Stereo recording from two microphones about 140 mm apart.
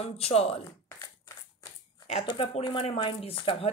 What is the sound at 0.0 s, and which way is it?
Speech, 45° left (ahead or behind).